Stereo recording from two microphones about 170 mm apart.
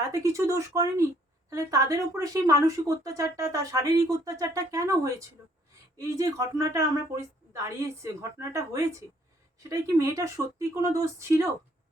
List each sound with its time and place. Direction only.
0.0 s a woman's voice: 20° right (ahead or behind)